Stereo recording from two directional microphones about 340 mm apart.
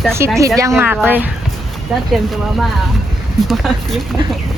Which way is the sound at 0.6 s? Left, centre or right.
Centre.